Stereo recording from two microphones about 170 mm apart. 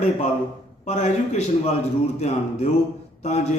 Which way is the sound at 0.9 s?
40° left (ahead or behind).